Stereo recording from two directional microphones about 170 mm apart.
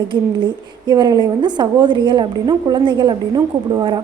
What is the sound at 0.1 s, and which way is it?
A woman's voice, 25° right (ahead or behind).